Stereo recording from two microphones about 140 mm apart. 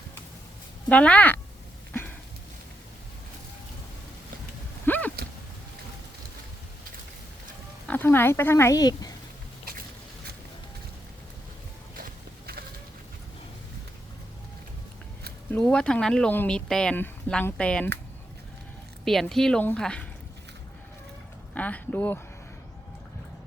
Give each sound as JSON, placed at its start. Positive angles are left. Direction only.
{"t": 0.9, "sound": "speech", "side_deg": 10}
{"t": 1.9, "sound": "a sound", "side_deg": 10}
{"t": 4.9, "sound": "a sound", "side_deg": 10}
{"t": 7.9, "sound": "speech", "side_deg": 15}
{"t": 11.9, "sound": "walk", "side_deg": -90}
{"t": 15.5, "sound": "speech", "side_deg": 5}
{"t": 19.0, "sound": "speech", "side_deg": 0}
{"t": 21.5, "sound": "speech", "side_deg": 10}